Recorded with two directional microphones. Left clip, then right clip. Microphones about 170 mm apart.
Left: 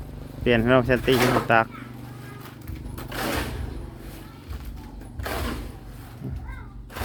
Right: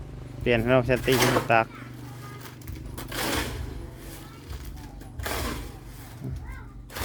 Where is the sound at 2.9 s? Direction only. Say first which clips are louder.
Left 1 dB; 20° right (ahead or behind).